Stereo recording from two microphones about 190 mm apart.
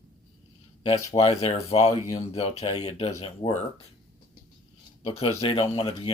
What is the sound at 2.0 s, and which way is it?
Speech, 15° left (ahead or behind).